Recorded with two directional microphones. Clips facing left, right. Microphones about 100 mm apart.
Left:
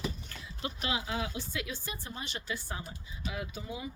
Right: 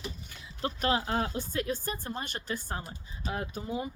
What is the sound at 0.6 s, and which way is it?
Speech, 45° right (ahead or behind).